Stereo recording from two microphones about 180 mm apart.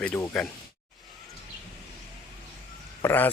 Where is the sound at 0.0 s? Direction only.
10° left (ahead or behind).